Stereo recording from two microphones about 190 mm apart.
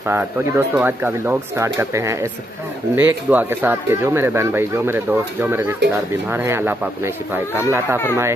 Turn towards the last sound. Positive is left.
turn(degrees=-10)  # may be behind; listen again after turning